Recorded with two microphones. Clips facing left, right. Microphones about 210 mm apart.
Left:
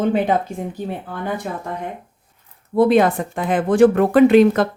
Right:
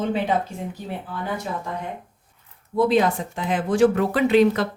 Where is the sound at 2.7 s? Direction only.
55° left (ahead or behind).